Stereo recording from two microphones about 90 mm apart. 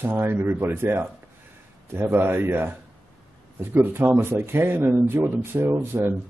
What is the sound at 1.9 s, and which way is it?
Speech, 30° right (ahead or behind).